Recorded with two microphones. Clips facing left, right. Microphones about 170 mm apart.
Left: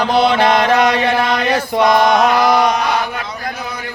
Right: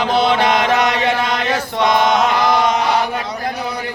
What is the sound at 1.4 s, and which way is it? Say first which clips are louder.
Chant: left 3 dB; 10° left (ahead or behind).